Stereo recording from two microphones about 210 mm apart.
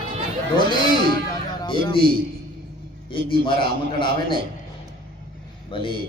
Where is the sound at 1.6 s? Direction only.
25° left (ahead or behind).